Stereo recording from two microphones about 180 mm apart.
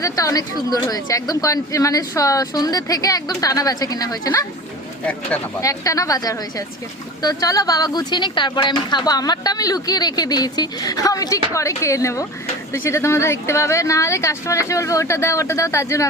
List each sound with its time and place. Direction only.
0.0 s speech: 20° left (ahead or behind)